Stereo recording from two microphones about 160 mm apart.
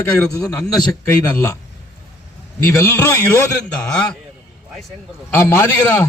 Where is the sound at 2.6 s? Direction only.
20° left (ahead or behind).